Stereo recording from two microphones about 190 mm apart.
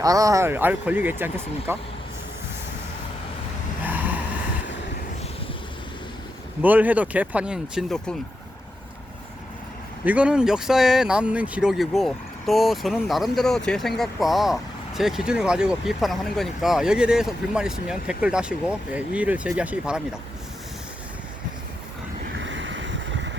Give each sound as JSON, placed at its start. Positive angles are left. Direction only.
{"t": 0.0, "sound": "speech", "side_deg": -20}
{"t": 3.8, "sound": "vehicle", "side_deg": -10}
{"t": 6.6, "sound": "speech", "side_deg": -10}
{"t": 10.0, "sound": "speech", "side_deg": -5}
{"t": 22.4, "sound": "boat", "side_deg": -75}